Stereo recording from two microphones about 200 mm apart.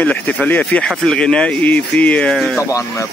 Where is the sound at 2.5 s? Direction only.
15° left (ahead or behind).